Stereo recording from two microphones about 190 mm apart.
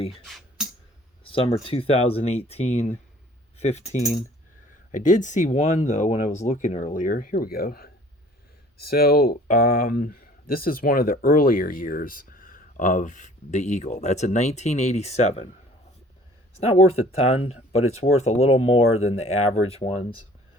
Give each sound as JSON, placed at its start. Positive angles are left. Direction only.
{"t": 0.3, "sound": "music", "side_deg": 0}
{"t": 1.2, "sound": "speech", "side_deg": 30}
{"t": 16.6, "sound": "speech", "side_deg": 35}
{"t": 18.8, "sound": "speech", "side_deg": 90}
{"t": 19.0, "sound": "speech", "side_deg": 35}